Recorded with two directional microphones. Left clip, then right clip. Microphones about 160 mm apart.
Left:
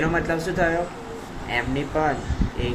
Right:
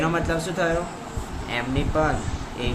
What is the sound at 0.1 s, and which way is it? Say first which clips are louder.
Speech: left 1 dB; 5° right (ahead or behind).